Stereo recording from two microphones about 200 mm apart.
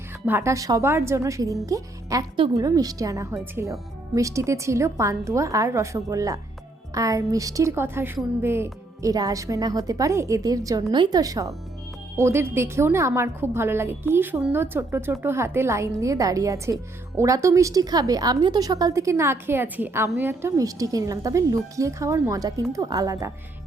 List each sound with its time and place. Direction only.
0.3 s a woman's voice: 15° right (ahead or behind)